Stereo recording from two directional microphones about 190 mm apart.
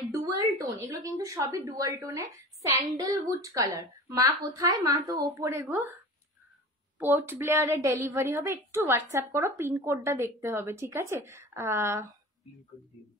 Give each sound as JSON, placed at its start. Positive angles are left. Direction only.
{"t": 0.1, "sound": "a woman's voice", "side_deg": -20}
{"t": 7.0, "sound": "a woman's voice", "side_deg": -10}